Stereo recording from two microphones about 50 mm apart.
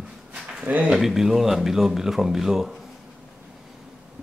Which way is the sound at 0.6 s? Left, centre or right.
Right.